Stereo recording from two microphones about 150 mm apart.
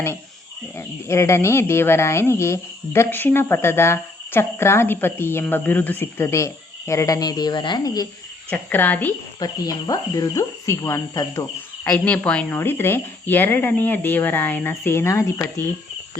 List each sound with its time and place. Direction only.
0.8 s speech: 20° left (ahead or behind)
8.4 s speech: 10° left (ahead or behind)
9.4 s speech: 25° left (ahead or behind)
11.9 s speech: 10° left (ahead or behind)